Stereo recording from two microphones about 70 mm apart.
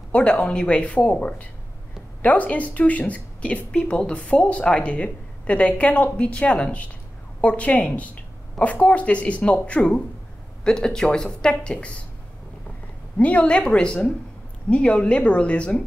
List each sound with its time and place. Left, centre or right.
0.1 s speech: centre
13.2 s speech: centre